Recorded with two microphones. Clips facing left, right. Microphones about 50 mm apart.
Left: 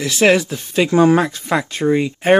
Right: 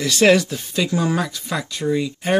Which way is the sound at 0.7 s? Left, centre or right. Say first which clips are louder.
Left 9 dB; left.